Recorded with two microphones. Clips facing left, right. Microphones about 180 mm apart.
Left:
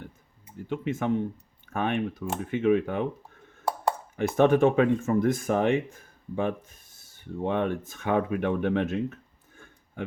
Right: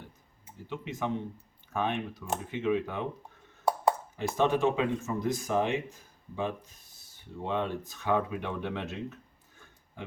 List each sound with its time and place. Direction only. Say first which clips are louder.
0.7 s speech: left 6 dB; 55° left (ahead or behind)
4.2 s speech: left 7 dB; 55° left (ahead or behind)